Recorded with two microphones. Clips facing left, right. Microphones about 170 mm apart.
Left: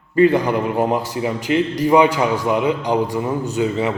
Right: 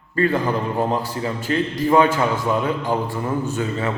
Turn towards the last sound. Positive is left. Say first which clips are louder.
# left 4 dB
turn(degrees=15)  # may be behind; listen again after turning